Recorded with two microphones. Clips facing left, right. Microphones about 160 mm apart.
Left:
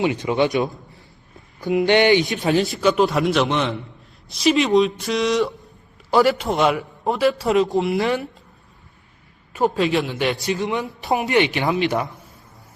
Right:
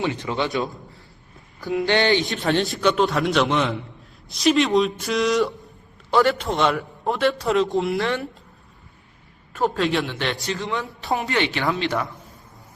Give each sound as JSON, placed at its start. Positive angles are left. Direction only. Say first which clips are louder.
{"t": 0.0, "sound": "a man's voice", "louder": "left 5 dB", "side_deg": 15}
{"t": 2.5, "sound": "a man's voice", "louder": "left 2 dB", "side_deg": 0}
{"t": 9.5, "sound": "a man's voice", "louder": "left 2 dB", "side_deg": 10}
{"t": 10.4, "sound": "a man's voice", "louder": "left 4 dB", "side_deg": 15}